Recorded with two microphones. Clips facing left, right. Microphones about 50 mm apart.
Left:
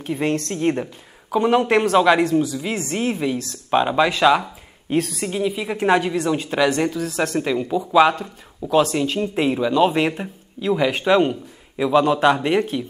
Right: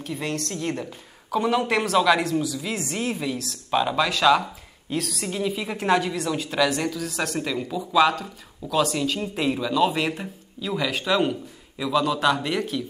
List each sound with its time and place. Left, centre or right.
0.0 s speech: left
2.9 s speech: centre
4.8 s a woman's voice: left
5.2 s a woman's voice: centre
7.0 s speech: centre
7.7 s speech: left